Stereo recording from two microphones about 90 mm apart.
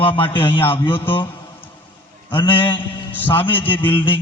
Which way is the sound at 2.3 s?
70° left (ahead or behind).